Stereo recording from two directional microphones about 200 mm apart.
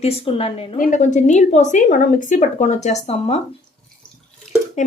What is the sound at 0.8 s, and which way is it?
A woman's voice, 40° left (ahead or behind).